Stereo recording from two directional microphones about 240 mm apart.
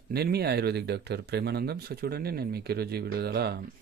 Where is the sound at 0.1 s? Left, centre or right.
Right.